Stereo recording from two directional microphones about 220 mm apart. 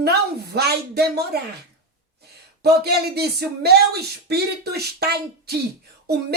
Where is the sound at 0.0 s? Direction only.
45° right (ahead or behind).